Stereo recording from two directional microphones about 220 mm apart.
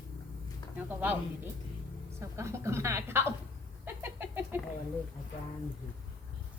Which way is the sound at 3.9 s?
10° right (ahead or behind).